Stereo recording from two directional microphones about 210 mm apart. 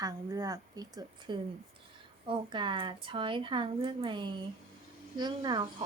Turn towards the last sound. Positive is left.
turn(degrees=-20)  # may be behind; listen again after turning